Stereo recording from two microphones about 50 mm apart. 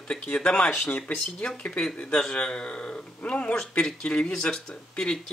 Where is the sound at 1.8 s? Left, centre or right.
Centre.